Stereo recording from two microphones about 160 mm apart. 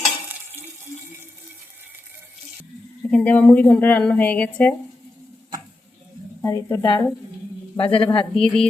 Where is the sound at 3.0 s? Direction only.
10° left (ahead or behind).